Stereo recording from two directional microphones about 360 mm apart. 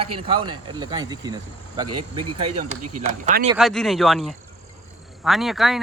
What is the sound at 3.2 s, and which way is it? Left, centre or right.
Speech, centre.